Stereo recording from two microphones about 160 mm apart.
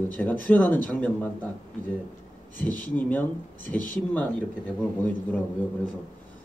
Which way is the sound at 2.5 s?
55° left (ahead or behind).